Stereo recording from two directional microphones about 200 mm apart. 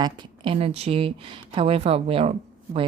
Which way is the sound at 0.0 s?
20° right (ahead or behind).